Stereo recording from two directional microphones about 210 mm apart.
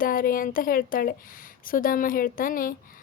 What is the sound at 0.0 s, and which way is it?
A woman's voice, 40° left (ahead or behind).